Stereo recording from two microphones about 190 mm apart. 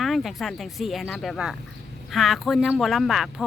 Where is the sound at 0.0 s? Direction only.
Centre (ahead or behind).